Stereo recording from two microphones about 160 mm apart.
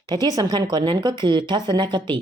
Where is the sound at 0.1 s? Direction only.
25° right (ahead or behind).